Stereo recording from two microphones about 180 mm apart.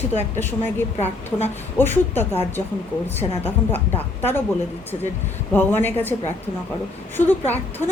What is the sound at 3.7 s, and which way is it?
Speech, 10° left (ahead or behind).